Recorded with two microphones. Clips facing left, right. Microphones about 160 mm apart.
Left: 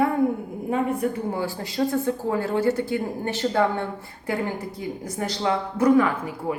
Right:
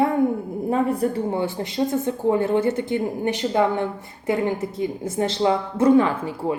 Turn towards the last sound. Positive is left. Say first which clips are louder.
# right 2 dB
turn(degrees=-25)  # may be behind; listen again after turning